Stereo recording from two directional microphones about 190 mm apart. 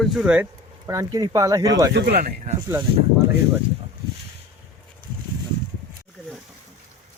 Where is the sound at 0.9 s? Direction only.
15° right (ahead or behind).